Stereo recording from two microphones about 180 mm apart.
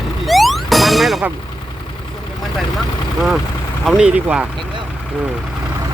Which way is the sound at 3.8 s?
5° right (ahead or behind).